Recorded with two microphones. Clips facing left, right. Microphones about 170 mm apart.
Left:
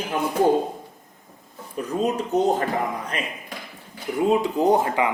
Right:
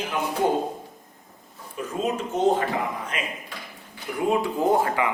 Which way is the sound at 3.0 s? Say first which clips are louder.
Left 1 dB; 35° left (ahead or behind).